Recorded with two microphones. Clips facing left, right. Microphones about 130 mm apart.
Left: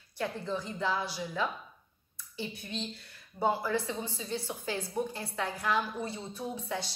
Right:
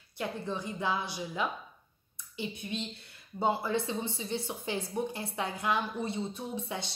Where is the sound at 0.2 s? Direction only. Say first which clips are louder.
Left 1 dB; 15° right (ahead or behind).